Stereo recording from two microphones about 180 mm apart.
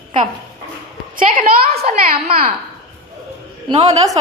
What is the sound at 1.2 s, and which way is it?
Speech, 50° right (ahead or behind).